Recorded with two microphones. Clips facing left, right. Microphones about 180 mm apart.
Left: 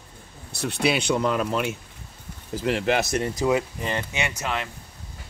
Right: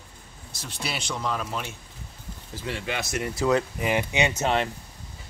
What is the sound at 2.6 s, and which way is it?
Speech, 90° left.